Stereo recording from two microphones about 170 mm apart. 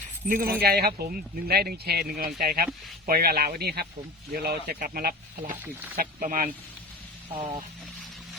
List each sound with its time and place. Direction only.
0.3 s speech: 55° right (ahead or behind)
0.6 s speech: 65° right (ahead or behind)
7.3 s speech: 30° right (ahead or behind)